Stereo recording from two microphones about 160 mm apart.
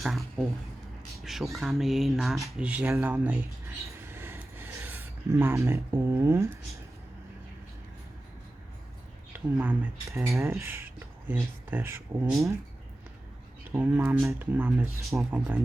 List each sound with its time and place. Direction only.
0.0 s speech: centre (ahead or behind)
4.0 s a sound: 15° right (ahead or behind)
9.3 s speech: 10° right (ahead or behind)
13.7 s speech: 10° right (ahead or behind)